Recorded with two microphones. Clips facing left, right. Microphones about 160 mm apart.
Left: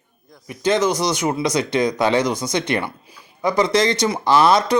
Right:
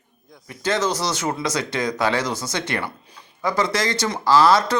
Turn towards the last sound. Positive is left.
turn(degrees=20)  # may be behind; listen again after turning